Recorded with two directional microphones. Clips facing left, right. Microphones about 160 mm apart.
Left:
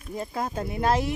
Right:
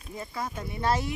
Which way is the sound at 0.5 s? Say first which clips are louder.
Left 4 dB; 90° left.